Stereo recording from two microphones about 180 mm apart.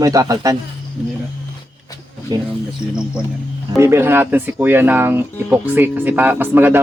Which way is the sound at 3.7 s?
15° right (ahead or behind).